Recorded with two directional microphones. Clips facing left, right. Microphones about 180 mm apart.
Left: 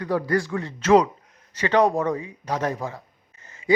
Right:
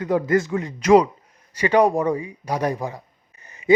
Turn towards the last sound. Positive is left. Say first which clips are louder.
# right 5 dB
turn(degrees=-15)  # may be behind; listen again after turning